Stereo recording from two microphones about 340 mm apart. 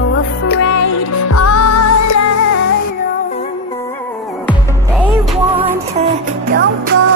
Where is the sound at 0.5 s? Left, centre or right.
Left.